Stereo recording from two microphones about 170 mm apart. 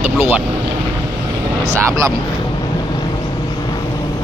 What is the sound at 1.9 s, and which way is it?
Speech, 20° right (ahead or behind).